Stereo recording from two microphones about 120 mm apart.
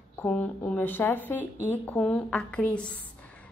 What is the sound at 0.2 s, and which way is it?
Speech, 10° left (ahead or behind).